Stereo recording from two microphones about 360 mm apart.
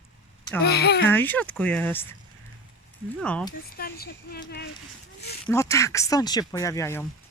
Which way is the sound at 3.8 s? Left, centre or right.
Left.